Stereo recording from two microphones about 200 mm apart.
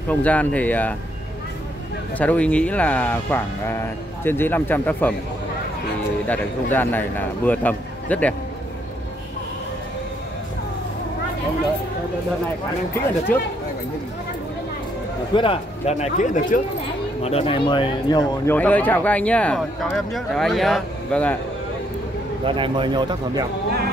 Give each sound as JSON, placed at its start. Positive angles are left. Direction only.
{"t": 0.1, "sound": "speech", "side_deg": 5}
{"t": 2.1, "sound": "speech", "side_deg": 5}
{"t": 6.2, "sound": "speech", "side_deg": 10}
{"t": 15.3, "sound": "speech", "side_deg": 25}
{"t": 18.5, "sound": "speech", "side_deg": 10}
{"t": 22.4, "sound": "speech", "side_deg": -25}